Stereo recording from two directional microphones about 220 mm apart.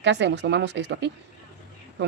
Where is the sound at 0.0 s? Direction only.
55° right (ahead or behind).